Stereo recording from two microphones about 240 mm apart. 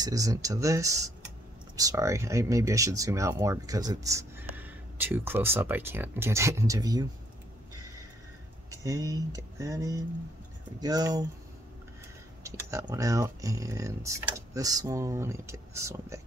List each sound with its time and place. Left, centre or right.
0.0 s speech: centre
8.6 s speech: centre
12.4 s speech: centre